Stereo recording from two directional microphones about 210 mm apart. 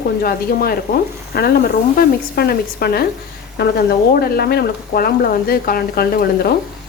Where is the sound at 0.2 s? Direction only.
45° left (ahead or behind).